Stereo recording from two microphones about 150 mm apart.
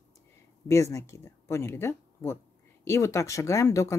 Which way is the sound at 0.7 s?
20° left (ahead or behind).